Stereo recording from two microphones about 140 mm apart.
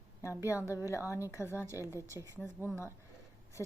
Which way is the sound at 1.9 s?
20° right (ahead or behind).